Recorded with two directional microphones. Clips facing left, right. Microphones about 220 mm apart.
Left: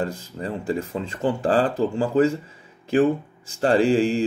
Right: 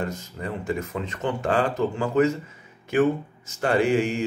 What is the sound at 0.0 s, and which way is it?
Speech, 30° left (ahead or behind).